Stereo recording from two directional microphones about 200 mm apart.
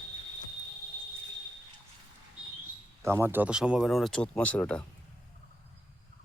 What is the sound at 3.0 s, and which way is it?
Speech, 10° right (ahead or behind).